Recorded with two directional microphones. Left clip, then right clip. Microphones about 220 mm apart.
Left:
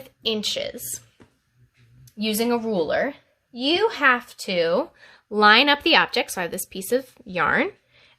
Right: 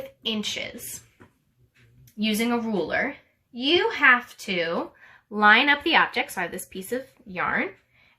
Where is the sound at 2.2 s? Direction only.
30° left (ahead or behind); by 7.7 s 50° left (ahead or behind).